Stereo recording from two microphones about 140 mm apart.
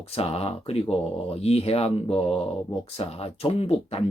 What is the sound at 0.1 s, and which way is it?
Speech, 45° left (ahead or behind).